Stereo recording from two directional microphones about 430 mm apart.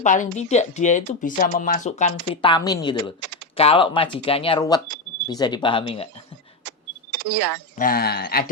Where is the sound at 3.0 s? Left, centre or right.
Right.